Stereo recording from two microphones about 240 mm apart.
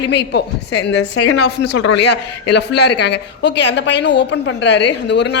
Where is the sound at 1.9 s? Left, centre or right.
Left.